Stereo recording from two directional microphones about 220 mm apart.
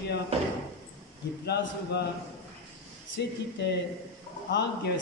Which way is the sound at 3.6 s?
55° left (ahead or behind).